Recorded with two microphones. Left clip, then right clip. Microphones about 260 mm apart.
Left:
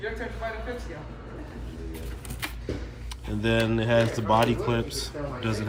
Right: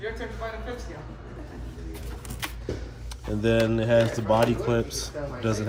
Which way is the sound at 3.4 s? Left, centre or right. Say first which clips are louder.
Right 2 dB; centre.